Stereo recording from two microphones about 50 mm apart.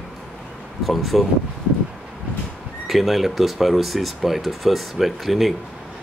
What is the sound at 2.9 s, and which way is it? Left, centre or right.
Speech, centre.